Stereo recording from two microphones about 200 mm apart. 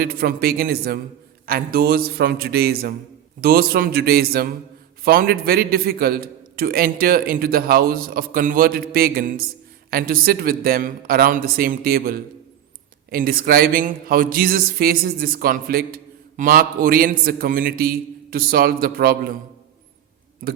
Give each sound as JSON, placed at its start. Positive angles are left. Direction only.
{"t": 0.0, "sound": "a man's voice", "side_deg": -50}
{"t": 20.4, "sound": "a man's voice", "side_deg": -45}